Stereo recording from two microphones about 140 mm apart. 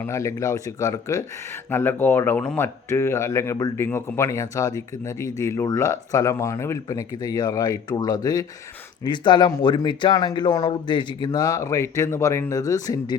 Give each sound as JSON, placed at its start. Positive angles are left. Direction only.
{"t": 0.0, "sound": "speech", "side_deg": 20}